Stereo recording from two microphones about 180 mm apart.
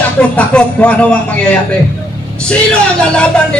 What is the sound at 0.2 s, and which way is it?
Music, 5° left (ahead or behind).